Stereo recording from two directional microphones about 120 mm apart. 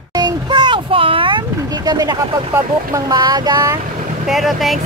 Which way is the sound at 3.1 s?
35° right (ahead or behind).